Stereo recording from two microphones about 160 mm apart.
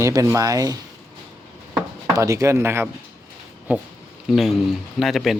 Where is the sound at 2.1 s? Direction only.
20° right (ahead or behind).